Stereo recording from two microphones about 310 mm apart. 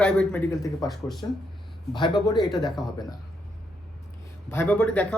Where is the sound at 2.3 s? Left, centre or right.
Centre.